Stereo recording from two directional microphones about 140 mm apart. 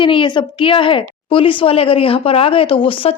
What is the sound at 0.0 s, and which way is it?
A woman's voice, 35° left (ahead or behind).